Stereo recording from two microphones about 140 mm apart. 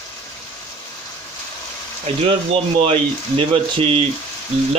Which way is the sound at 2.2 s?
45° right (ahead or behind).